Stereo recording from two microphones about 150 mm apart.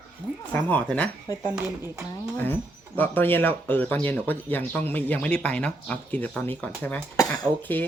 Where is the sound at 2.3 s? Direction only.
15° left (ahead or behind).